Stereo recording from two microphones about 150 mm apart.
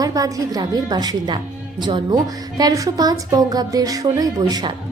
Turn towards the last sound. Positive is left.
turn(degrees=-25)  # may be behind; listen again after turning